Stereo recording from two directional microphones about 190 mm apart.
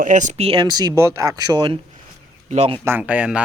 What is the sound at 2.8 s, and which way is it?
Speech, 10° right (ahead or behind).